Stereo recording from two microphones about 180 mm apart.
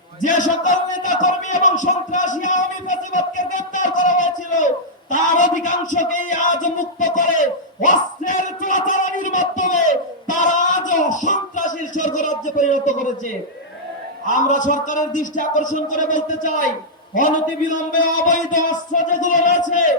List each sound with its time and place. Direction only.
0.2 s a sound: 45° left (ahead or behind)
14.3 s a man's voice: 45° left (ahead or behind)
17.9 s music: 45° left (ahead or behind)